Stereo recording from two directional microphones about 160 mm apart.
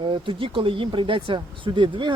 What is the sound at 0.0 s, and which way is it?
Speech, 30° right (ahead or behind).